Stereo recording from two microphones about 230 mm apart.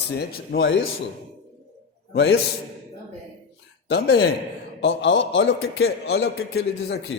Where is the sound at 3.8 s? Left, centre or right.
Left.